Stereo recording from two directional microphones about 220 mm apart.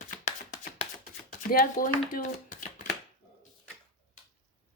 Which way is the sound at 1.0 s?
35° left (ahead or behind).